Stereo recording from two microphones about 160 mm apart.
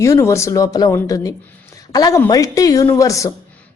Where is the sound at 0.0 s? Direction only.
20° left (ahead or behind).